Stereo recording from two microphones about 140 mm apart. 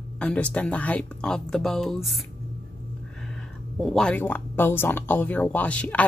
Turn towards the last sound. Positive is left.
turn(degrees=10)  # may be behind; listen again after turning